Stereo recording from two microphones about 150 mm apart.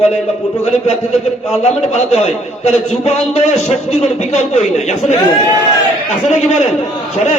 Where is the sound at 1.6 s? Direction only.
45° left (ahead or behind).